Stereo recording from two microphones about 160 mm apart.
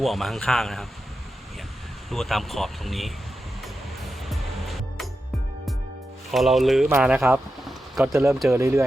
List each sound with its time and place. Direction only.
0.0 s speech: centre (ahead or behind)
2.0 s speech: centre (ahead or behind)
3.6 s music: centre (ahead or behind)
6.3 s speech: centre (ahead or behind)
7.3 s a sound: 5° right (ahead or behind)
8.1 s speech: 15° right (ahead or behind)